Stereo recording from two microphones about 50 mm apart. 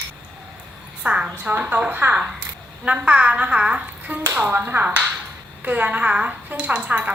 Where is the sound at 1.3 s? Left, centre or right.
Right.